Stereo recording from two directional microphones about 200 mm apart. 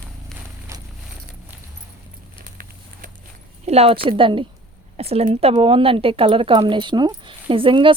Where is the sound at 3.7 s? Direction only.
30° right (ahead or behind).